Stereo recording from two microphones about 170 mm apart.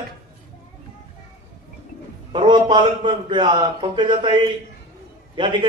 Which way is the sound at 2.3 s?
30° right (ahead or behind).